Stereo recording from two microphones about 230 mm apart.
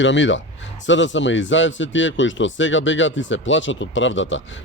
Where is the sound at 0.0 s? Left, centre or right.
Left.